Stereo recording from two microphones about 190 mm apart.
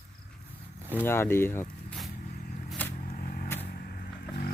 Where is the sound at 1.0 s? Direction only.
10° left (ahead or behind).